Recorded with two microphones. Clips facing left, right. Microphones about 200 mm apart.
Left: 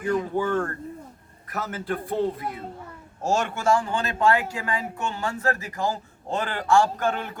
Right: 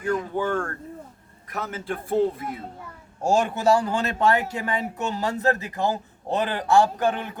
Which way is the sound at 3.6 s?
40° right (ahead or behind).